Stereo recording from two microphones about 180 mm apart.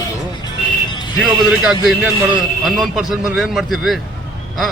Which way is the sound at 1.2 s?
Centre (ahead or behind).